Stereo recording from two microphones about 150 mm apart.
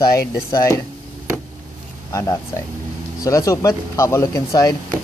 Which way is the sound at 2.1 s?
20° left (ahead or behind).